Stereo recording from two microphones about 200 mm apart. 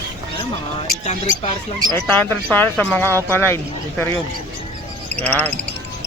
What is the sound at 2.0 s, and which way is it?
Speech, 10° left (ahead or behind).